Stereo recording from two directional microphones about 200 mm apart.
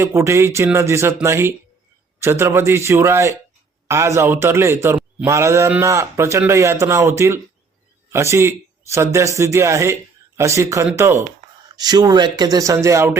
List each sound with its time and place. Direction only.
0.0 s a man's voice: 15° right (ahead or behind)